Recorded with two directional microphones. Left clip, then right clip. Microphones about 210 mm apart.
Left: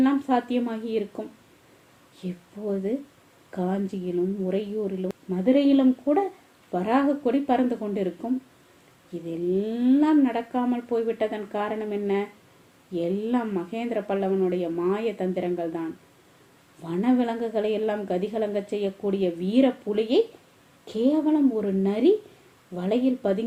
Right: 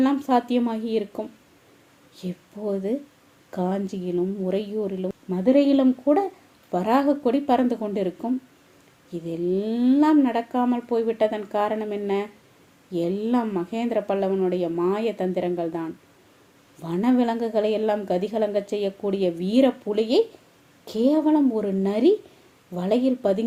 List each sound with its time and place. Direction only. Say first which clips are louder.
0.0 s a woman's voice: right 2 dB; 40° right (ahead or behind)
2.2 s a woman's voice: right 2 dB; 40° right (ahead or behind)